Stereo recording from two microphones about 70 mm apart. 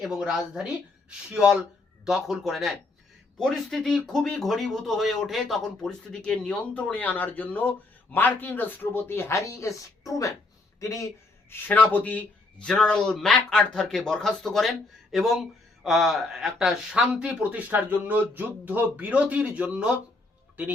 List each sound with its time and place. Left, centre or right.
0.0 s a woman's voice: centre; by 11.1 s left
11.5 s speech: left
12.6 s speech: centre
17.1 s speech: centre